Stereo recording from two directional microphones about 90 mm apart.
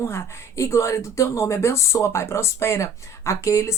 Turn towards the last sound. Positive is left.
turn(degrees=35)  # may be behind; listen again after turning